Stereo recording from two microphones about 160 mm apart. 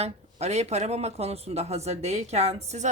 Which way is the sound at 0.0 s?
40° right (ahead or behind).